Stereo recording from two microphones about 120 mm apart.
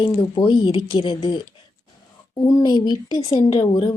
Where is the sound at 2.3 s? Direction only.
35° left (ahead or behind).